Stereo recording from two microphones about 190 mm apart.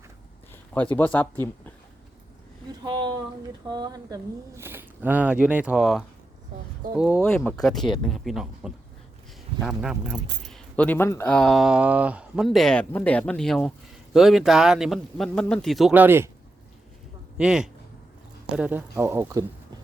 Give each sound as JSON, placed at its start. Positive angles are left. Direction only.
{"t": 0.7, "sound": "speech", "side_deg": 10}
{"t": 2.8, "sound": "a sound", "side_deg": -25}
{"t": 3.7, "sound": "speech", "side_deg": -20}
{"t": 7.2, "sound": "speech", "side_deg": 5}
{"t": 17.3, "sound": "speech", "side_deg": -5}